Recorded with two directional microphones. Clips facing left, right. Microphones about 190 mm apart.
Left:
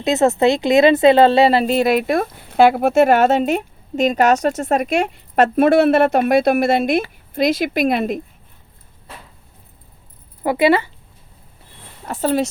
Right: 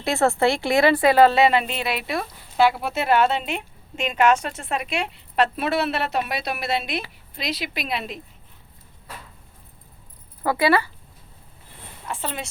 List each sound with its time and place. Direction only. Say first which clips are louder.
0.0 s speech: left 5 dB; 20° left (ahead or behind); by 8.2 s 50° left (ahead or behind)
10.4 s speech: left 5 dB; 20° left (ahead or behind)
12.0 s speech: left 12 dB; 40° left (ahead or behind)